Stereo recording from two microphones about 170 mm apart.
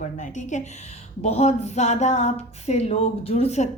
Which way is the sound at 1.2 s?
40° left (ahead or behind).